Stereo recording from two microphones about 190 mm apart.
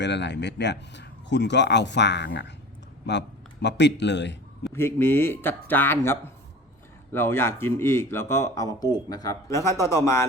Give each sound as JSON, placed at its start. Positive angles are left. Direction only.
{"t": 0.0, "sound": "speech", "side_deg": 65}
{"t": 4.7, "sound": "speech", "side_deg": 15}